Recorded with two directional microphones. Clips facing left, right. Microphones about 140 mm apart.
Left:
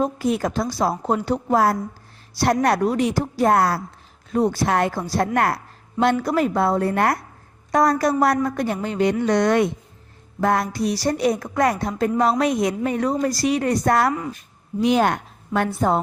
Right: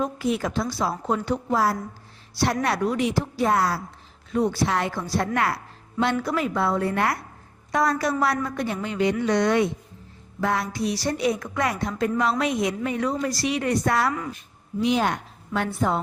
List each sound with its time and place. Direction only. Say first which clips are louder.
0.0 s speech: left 4 dB; 45° left (ahead or behind)
1.5 s a woman's voice: left 6 dB; 55° left (ahead or behind)
4.3 s speech: left 3 dB; 40° left (ahead or behind)
4.6 s a woman's voice: left 4 dB; 50° left (ahead or behind)
14.8 s a woman's voice: left 4 dB; 50° left (ahead or behind)